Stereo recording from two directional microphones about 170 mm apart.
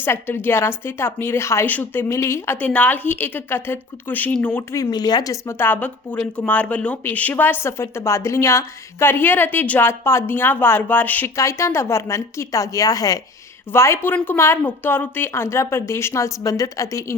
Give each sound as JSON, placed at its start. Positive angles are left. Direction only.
{"t": 0.0, "sound": "a woman's voice", "side_deg": 15}